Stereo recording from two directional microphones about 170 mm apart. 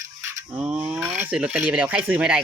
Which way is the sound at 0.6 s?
5° right (ahead or behind).